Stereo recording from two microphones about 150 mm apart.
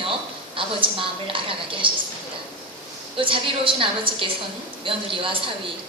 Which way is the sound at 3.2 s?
35° right (ahead or behind).